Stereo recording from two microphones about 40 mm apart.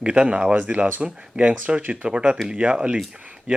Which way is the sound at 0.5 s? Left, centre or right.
Right.